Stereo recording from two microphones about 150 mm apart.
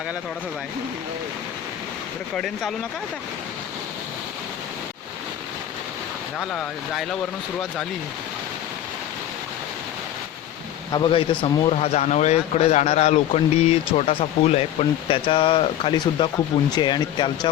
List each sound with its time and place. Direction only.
2.3 s speech: 5° left (ahead or behind)
6.4 s speech: 5° left (ahead or behind)
10.9 s speech: 35° left (ahead or behind)